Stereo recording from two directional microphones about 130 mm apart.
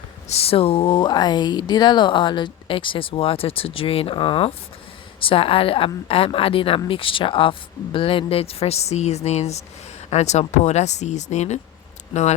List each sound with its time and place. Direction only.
0.3 s a woman's voice: 50° left (ahead or behind)